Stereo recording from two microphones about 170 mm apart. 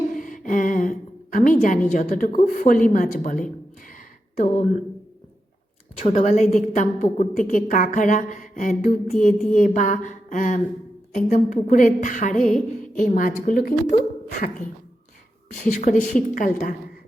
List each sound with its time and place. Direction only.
0.2 s a sound: 50° left (ahead or behind)
1.9 s a woman's voice: 50° left (ahead or behind)
6.0 s a woman's voice: 45° left (ahead or behind)
15.6 s a woman's voice: 45° left (ahead or behind)